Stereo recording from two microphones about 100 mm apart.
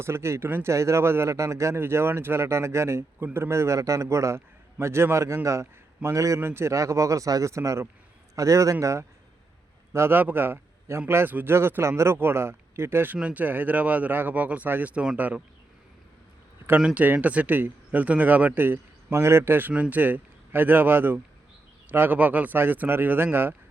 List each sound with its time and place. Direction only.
0.0 s a man's voice: 25° right (ahead or behind)
16.8 s a man's voice: 15° right (ahead or behind)